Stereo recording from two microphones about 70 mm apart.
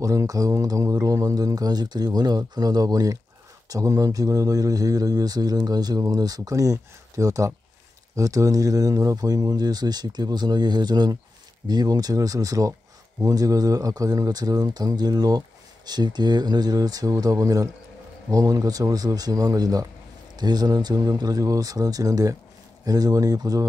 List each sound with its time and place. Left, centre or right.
0.0 s speech: right
11.6 s speech: right
20.3 s speech: right